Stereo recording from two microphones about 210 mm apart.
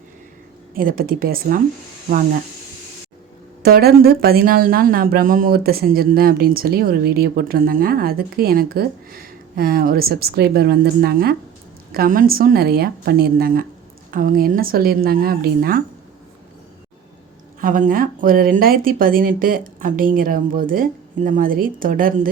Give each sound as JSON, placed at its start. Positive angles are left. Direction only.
{"t": 0.8, "sound": "speech", "side_deg": -40}
{"t": 3.6, "sound": "a woman's voice", "side_deg": -45}
{"t": 17.6, "sound": "speech", "side_deg": -40}